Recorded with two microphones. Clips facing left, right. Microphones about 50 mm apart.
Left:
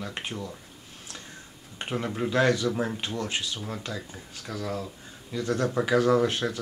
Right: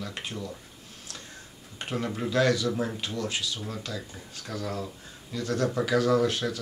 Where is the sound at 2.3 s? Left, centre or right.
Left.